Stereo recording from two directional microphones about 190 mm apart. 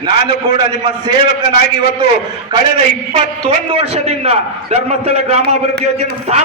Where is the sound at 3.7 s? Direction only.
35° right (ahead or behind).